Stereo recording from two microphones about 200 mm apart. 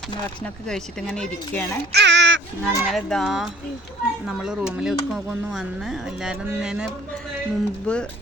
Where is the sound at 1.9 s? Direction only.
60° right (ahead or behind).